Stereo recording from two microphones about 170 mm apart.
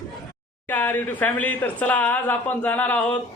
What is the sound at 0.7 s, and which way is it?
A man's voice, 10° left (ahead or behind).